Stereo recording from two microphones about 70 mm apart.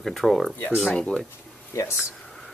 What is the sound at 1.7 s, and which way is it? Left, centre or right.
Speech, left.